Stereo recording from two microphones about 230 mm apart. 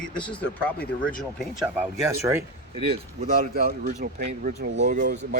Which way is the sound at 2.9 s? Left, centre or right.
Right.